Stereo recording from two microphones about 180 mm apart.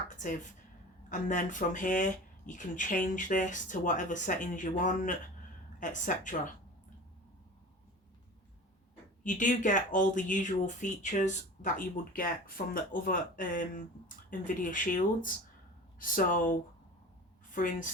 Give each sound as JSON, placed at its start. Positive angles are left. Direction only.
{"t": 1.1, "sound": "speech", "side_deg": 45}
{"t": 9.2, "sound": "a woman's voice", "side_deg": 45}